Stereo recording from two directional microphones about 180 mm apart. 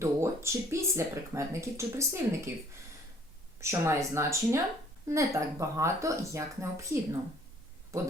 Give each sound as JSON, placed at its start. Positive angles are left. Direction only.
{"t": 0.0, "sound": "speech", "side_deg": -15}
{"t": 3.6, "sound": "speech", "side_deg": -15}